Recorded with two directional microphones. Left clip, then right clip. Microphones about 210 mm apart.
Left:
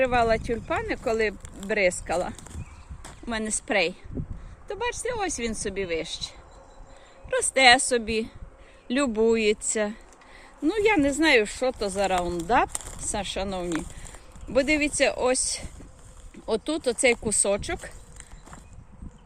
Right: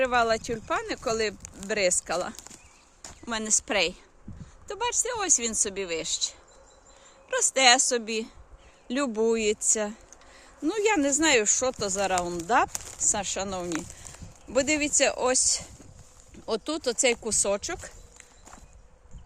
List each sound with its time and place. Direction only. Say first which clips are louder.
0.0 s speech: left 2 dB; 10° right (ahead or behind)
7.3 s speech: left 3 dB; 10° right (ahead or behind)